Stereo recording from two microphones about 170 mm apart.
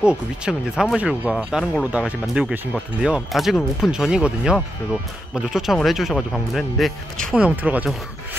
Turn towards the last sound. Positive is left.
turn(degrees=-10)  # may be behind; listen again after turning